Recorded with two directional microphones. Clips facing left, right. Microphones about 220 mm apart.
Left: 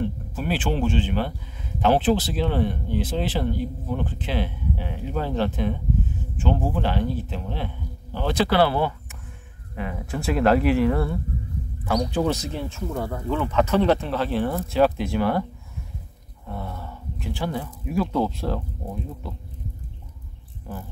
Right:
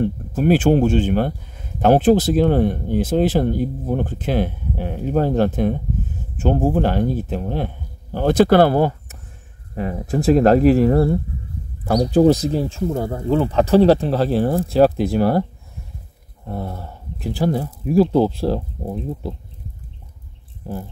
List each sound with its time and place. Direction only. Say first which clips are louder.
0.0 s speech: right 9 dB; 45° right (ahead or behind)
16.4 s speech: right 5 dB; 35° right (ahead or behind)